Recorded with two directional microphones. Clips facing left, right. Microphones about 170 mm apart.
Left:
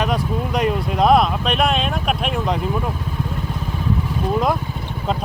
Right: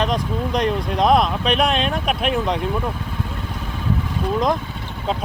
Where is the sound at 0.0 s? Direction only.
5° left (ahead or behind).